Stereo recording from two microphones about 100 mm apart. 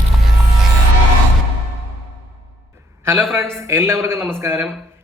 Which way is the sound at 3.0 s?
25° right (ahead or behind).